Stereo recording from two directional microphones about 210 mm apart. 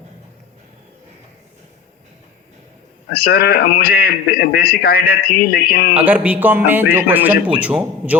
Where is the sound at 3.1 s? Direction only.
45° left (ahead or behind).